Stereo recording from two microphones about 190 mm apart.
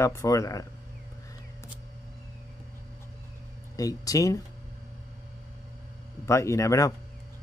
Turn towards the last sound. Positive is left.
turn(degrees=15)  # may be behind; listen again after turning